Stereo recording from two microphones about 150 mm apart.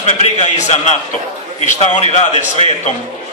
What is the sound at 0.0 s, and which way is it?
A man's voice, 50° left (ahead or behind).